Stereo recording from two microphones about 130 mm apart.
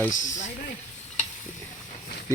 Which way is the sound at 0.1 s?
80° left.